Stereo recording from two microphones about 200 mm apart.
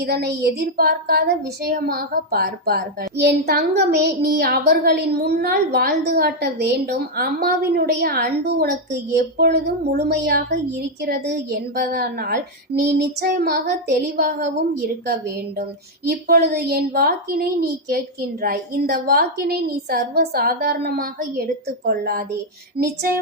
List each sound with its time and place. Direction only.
0.0 s speech: 50° right (ahead or behind)
12.9 s child singing: 55° right (ahead or behind)
13.3 s speech: 50° right (ahead or behind)